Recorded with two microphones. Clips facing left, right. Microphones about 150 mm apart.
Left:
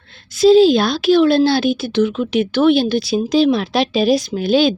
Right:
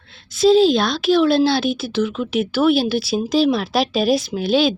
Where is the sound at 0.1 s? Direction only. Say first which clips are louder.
Left 3 dB; centre (ahead or behind).